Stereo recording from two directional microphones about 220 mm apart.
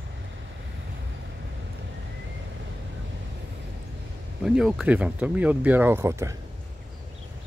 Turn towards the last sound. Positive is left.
turn(degrees=-10)  # may be behind; listen again after turning